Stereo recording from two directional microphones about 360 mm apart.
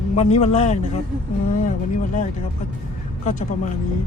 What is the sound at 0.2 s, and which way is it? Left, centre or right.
Speech, centre.